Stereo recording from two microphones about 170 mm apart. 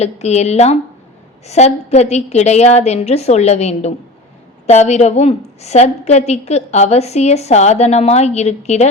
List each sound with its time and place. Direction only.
0.0 s a woman's voice: 40° left (ahead or behind)